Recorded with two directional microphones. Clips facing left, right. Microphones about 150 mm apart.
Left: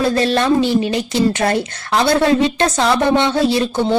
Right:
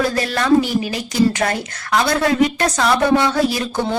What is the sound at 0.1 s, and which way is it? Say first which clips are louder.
A woman's voice: left 1 dB; 25° left (ahead or behind).